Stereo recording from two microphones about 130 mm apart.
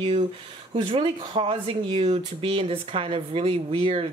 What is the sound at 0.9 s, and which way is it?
Speech, 40° right (ahead or behind).